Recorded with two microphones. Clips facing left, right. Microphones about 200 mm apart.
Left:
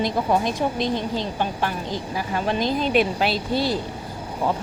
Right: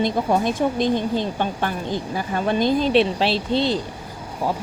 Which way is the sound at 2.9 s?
30° right (ahead or behind).